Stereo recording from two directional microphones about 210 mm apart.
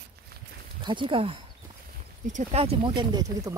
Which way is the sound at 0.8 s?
25° right (ahead or behind).